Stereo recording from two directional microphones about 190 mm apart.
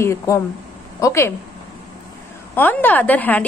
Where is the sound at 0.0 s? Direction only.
15° left (ahead or behind).